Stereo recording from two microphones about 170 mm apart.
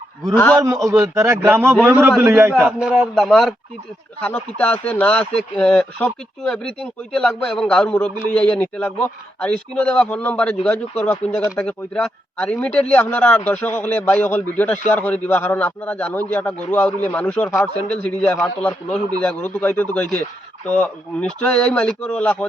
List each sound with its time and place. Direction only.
0.3 s a man's voice: 10° left (ahead or behind)
0.6 s a man's voice: 15° right (ahead or behind); by 22.4 s 5° left (ahead or behind)